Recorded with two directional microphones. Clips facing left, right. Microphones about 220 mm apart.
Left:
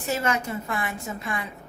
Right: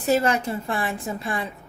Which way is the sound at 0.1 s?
35° right (ahead or behind).